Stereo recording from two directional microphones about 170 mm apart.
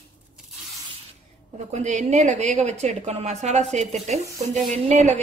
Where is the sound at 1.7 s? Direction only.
45° right (ahead or behind).